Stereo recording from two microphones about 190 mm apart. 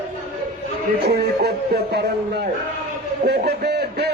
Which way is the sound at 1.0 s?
60° right (ahead or behind).